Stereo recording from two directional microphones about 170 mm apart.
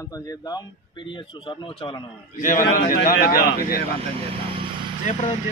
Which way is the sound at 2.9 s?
60° left (ahead or behind).